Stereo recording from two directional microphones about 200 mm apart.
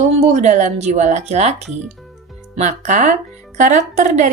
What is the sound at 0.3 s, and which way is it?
Speech, 35° right (ahead or behind).